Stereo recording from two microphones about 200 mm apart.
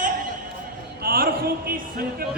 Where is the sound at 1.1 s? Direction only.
50° right (ahead or behind).